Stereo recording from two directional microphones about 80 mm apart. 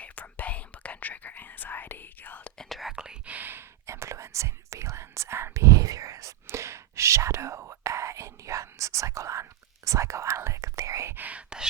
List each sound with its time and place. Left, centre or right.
0.0 s whispering: centre
2.6 s whispering: centre
2.9 s whispering: centre; by 11.1 s right
11.1 s whispering: right